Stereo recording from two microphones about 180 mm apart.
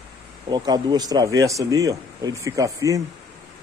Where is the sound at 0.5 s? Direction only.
25° right (ahead or behind).